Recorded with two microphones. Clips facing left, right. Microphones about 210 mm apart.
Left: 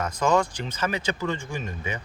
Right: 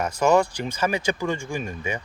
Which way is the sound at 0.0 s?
10° right (ahead or behind).